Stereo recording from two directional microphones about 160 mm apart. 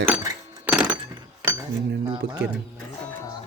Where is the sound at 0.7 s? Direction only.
5° right (ahead or behind).